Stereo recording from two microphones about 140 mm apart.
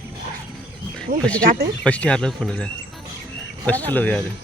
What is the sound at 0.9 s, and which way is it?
Speech, 5° left (ahead or behind).